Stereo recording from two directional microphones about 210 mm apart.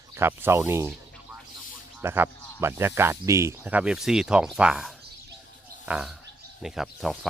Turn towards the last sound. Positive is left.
turn(degrees=0)  # may be behind; listen again after turning